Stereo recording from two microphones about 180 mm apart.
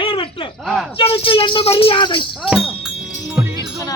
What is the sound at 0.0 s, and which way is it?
Basketball bounce, 30° left (ahead or behind).